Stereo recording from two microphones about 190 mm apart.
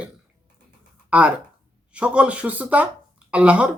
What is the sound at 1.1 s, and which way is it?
Speech, 5° right (ahead or behind).